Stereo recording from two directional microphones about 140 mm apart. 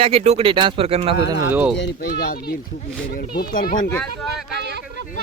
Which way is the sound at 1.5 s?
10° right (ahead or behind).